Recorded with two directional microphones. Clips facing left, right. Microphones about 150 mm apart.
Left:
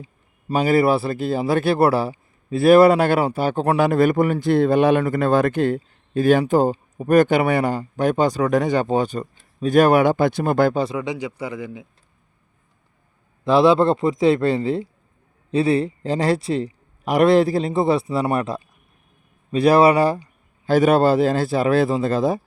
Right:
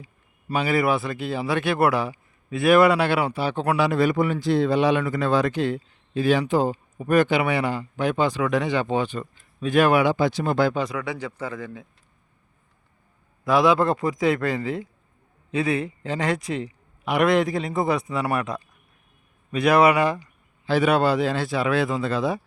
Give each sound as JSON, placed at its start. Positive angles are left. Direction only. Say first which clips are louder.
{"t": 0.0, "sound": "a sound", "louder": "left 5 dB", "side_deg": 25}
{"t": 0.6, "sound": "speech", "louder": "left 5 dB", "side_deg": 40}
{"t": 10.8, "sound": "a man's voice", "louder": "left 4 dB", "side_deg": 25}
{"t": 13.4, "sound": "a man's voice", "louder": "left 4 dB", "side_deg": 30}